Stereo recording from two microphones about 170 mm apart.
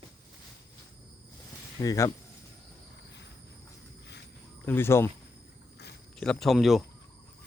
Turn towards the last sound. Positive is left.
turn(degrees=0)  # may be behind; listen again after turning